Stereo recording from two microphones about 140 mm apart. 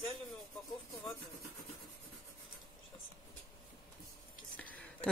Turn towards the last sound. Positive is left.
turn(degrees=10)  # may be behind; listen again after turning